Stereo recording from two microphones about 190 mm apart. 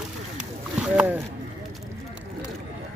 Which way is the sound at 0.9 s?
10° right (ahead or behind).